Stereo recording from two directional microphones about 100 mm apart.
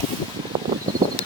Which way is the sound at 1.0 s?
35° right (ahead or behind).